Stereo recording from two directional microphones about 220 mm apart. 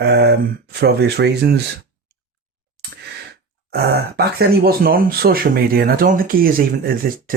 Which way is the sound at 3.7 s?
45° right (ahead or behind).